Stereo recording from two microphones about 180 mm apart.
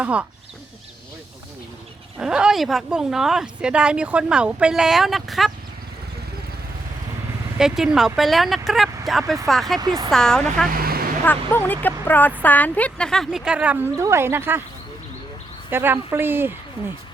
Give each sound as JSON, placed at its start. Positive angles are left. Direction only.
{"t": 0.0, "sound": "speech", "side_deg": -5}
{"t": 2.1, "sound": "speech", "side_deg": -5}
{"t": 7.6, "sound": "speech", "side_deg": -5}
{"t": 9.8, "sound": "speech", "side_deg": -20}
{"t": 10.1, "sound": "speech", "side_deg": 5}
{"t": 10.7, "sound": "vehicle", "side_deg": -55}
{"t": 11.3, "sound": "speech", "side_deg": 10}
{"t": 15.7, "sound": "speech", "side_deg": -10}